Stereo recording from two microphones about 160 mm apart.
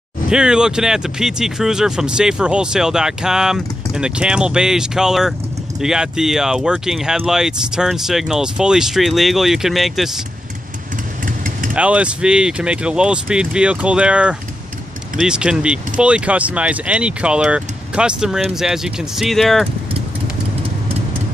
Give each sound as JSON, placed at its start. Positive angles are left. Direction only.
{"t": 0.3, "sound": "speech", "side_deg": -5}
{"t": 11.2, "sound": "vehicle", "side_deg": -60}
{"t": 11.7, "sound": "speech", "side_deg": -5}